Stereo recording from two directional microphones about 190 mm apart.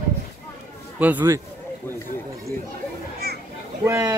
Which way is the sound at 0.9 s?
10° right (ahead or behind).